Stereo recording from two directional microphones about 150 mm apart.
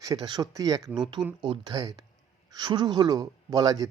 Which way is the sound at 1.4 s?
30° right (ahead or behind).